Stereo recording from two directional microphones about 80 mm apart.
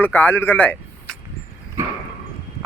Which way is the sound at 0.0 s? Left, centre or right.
Left.